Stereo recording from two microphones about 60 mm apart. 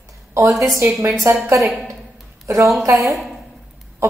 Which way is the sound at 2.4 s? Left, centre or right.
Right.